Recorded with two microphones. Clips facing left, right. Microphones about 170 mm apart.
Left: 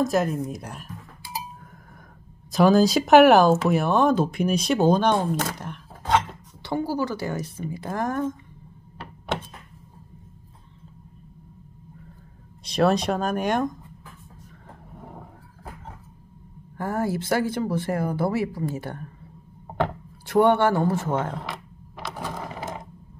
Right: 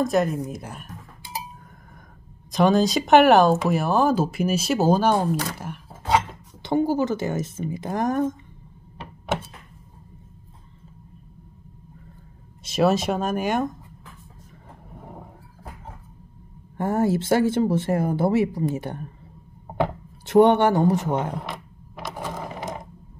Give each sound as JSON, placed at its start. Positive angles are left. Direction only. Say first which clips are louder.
{"t": 0.0, "sound": "speech", "louder": "right 1 dB", "side_deg": 0}
{"t": 2.5, "sound": "speech", "louder": "left 1 dB", "side_deg": 0}
{"t": 6.6, "sound": "speech", "louder": "right 4 dB", "side_deg": -20}
{"t": 12.6, "sound": "speech", "louder": "right 1 dB", "side_deg": -5}
{"t": 16.7, "sound": "speech", "louder": "right 4 dB", "side_deg": -25}